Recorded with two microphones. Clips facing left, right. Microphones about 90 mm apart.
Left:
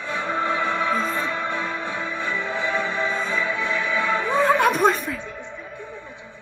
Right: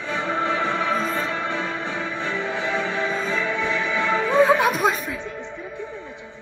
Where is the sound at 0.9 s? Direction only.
Centre (ahead or behind).